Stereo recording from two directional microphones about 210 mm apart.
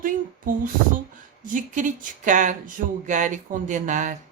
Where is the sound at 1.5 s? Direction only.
40° right (ahead or behind).